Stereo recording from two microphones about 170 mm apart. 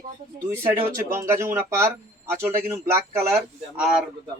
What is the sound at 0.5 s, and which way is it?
Speech, 15° right (ahead or behind).